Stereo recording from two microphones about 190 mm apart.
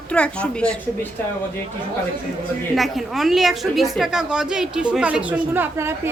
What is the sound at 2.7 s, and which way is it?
A woman's voice, centre (ahead or behind).